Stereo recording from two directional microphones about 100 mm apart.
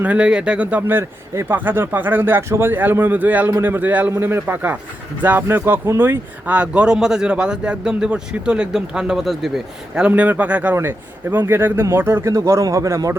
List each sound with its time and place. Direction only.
0.0 s speech: 10° right (ahead or behind); by 13.1 s 35° right (ahead or behind)